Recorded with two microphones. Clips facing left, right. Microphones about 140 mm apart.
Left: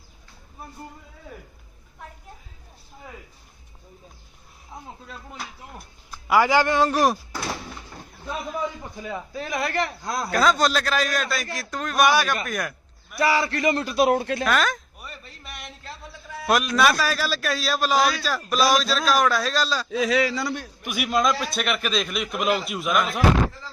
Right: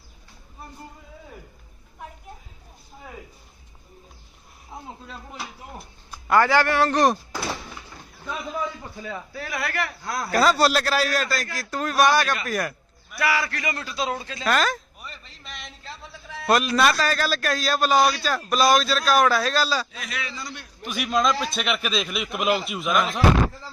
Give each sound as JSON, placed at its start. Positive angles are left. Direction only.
{"t": 5.0, "sound": "a man's voice", "side_deg": 0}
{"t": 6.2, "sound": "speech", "side_deg": 10}
{"t": 6.9, "sound": "a man's voice", "side_deg": 0}
{"t": 8.8, "sound": "speech", "side_deg": 15}
{"t": 10.3, "sound": "a man's voice", "side_deg": -5}
{"t": 12.5, "sound": "a sound", "side_deg": 0}
{"t": 13.1, "sound": "speech", "side_deg": 25}
{"t": 13.8, "sound": "a man's voice", "side_deg": 60}
{"t": 14.4, "sound": "a sound", "side_deg": 0}
{"t": 15.1, "sound": "a sound", "side_deg": 50}
{"t": 15.4, "sound": "a sound", "side_deg": 5}
{"t": 17.0, "sound": "a man's voice", "side_deg": 5}
{"t": 20.1, "sound": "a man's voice", "side_deg": 90}
{"t": 20.8, "sound": "a man's voice", "side_deg": 10}